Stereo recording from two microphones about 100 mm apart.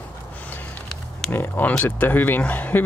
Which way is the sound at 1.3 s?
20° left (ahead or behind).